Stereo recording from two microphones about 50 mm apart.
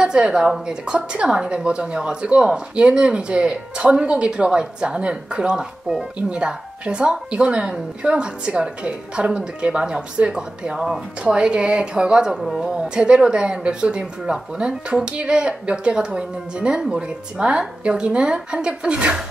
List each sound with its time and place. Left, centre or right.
0.0 s a woman's voice: centre